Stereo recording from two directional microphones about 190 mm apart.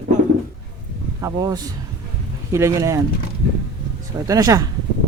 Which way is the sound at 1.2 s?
20° right (ahead or behind).